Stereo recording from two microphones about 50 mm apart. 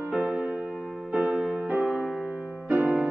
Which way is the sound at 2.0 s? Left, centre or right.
Centre.